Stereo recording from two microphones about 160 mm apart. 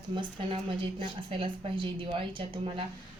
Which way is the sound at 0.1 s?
30° right (ahead or behind).